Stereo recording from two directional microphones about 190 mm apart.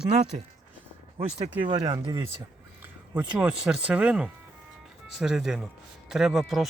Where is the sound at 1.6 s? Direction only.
25° right (ahead or behind).